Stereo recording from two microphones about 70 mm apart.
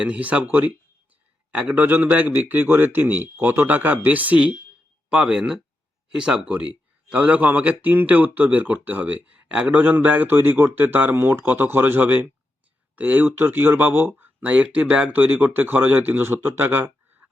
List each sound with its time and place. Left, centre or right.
0.0 s speech: centre
1.5 s speech: centre
5.0 s speech: centre
9.7 s speech: right
14.2 s speech: centre